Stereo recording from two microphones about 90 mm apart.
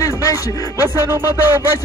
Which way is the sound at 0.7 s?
25° right (ahead or behind).